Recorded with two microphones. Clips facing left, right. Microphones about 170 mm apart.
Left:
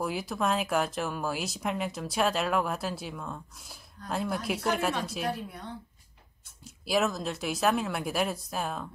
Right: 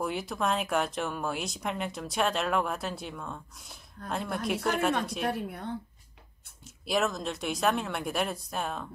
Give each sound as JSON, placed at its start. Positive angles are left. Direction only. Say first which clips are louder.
{"t": 0.0, "sound": "speech", "louder": "left 1 dB", "side_deg": 0}
{"t": 5.3, "sound": "a woman's voice", "louder": "right 3 dB", "side_deg": -55}
{"t": 6.6, "sound": "speech", "louder": "left 1 dB", "side_deg": 0}